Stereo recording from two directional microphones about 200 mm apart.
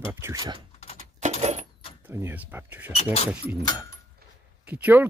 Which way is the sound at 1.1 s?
35° right (ahead or behind).